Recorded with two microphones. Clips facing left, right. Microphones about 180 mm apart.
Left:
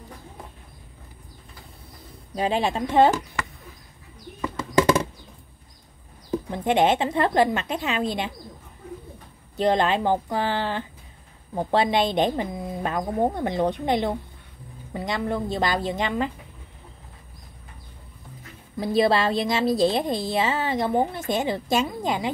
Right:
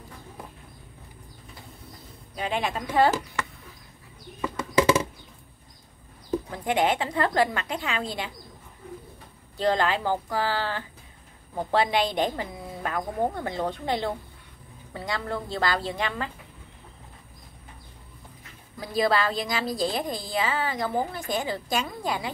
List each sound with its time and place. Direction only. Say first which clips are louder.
2.3 s a woman's voice: left 5 dB; 35° left (ahead or behind)
6.5 s a woman's voice: left 5 dB; 25° left (ahead or behind)
9.6 s a woman's voice: left 3 dB; 20° left (ahead or behind)
18.8 s a woman's voice: left 4 dB; 25° left (ahead or behind)